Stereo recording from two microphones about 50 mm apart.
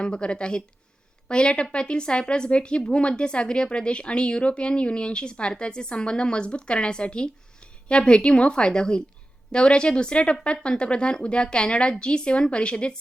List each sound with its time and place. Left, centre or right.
0.0 s a woman's voice: centre